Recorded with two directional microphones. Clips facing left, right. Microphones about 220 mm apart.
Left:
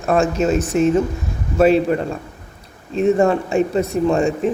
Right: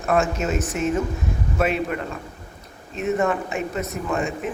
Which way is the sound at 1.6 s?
35° left (ahead or behind).